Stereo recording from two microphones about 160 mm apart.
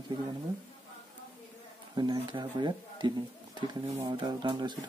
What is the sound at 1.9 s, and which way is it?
Speech, 25° right (ahead or behind).